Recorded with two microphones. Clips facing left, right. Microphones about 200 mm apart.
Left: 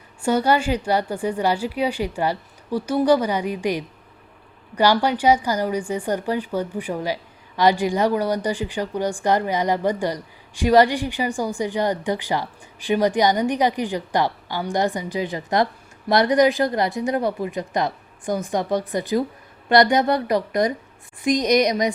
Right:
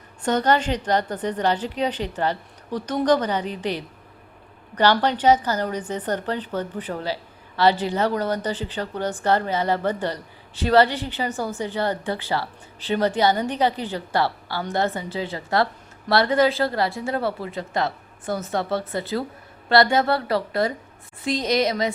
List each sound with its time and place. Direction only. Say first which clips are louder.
0.2 s speech: left 1 dB; 10° left (ahead or behind)